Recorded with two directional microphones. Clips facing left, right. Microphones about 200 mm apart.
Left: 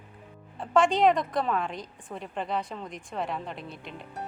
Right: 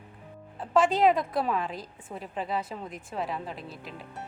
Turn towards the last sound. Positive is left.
turn(degrees=0)  # may be behind; listen again after turning